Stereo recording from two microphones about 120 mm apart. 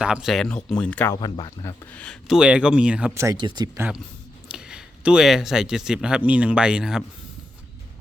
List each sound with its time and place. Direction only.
0.0 s speech: 5° right (ahead or behind); by 1.1 s 10° left (ahead or behind)
1.1 s speech: 35° left (ahead or behind)
1.9 s speech: 10° left (ahead or behind); by 3.1 s 10° right (ahead or behind)
3.3 s speech: 40° right (ahead or behind)
3.8 s speech: 10° right (ahead or behind)